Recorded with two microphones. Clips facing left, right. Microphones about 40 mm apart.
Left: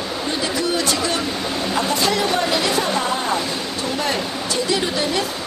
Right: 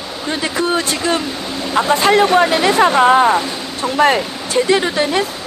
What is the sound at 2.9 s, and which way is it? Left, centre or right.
Speech, right.